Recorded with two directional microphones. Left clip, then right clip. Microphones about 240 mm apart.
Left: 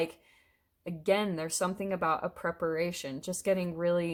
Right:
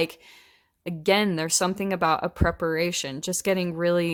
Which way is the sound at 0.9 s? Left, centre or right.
Right.